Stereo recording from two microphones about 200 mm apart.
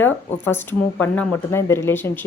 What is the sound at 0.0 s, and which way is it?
A woman's voice, 10° left (ahead or behind).